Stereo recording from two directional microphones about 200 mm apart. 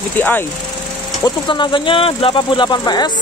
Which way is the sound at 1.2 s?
25° left (ahead or behind).